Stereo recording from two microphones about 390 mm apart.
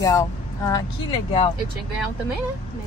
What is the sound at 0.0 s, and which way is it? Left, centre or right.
Speech, centre.